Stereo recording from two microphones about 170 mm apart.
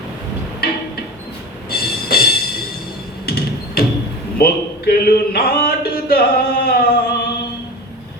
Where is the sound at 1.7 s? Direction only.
65° left (ahead or behind).